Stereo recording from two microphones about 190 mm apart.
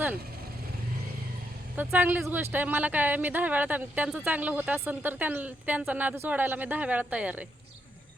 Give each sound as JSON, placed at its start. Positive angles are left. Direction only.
{"t": 1.7, "sound": "speech", "side_deg": -10}